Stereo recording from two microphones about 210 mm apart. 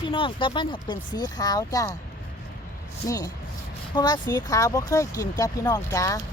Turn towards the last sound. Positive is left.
turn(degrees=15)  # may be behind; listen again after turning